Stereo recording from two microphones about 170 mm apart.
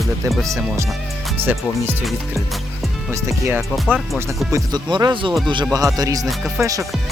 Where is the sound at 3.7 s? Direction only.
Centre (ahead or behind).